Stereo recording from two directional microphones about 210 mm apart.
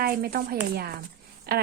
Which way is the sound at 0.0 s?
45° right (ahead or behind).